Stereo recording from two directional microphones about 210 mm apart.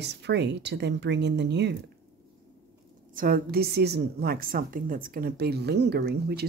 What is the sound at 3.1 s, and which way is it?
A woman's voice, 45° right (ahead or behind).